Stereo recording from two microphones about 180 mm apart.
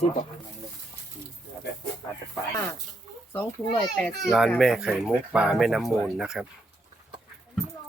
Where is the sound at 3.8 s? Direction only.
5° left (ahead or behind).